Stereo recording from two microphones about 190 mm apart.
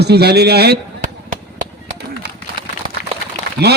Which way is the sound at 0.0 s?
60° right (ahead or behind).